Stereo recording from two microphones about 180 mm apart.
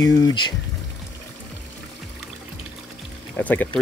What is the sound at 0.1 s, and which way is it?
Speech, 20° left (ahead or behind).